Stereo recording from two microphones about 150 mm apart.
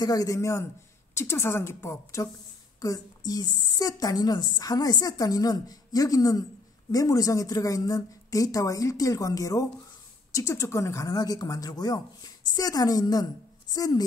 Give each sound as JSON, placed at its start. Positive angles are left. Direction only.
{"t": 0.0, "sound": "a woman's voice", "side_deg": 25}